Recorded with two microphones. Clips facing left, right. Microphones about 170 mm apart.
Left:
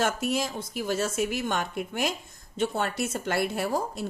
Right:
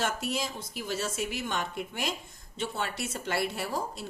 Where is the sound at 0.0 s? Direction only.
50° left (ahead or behind).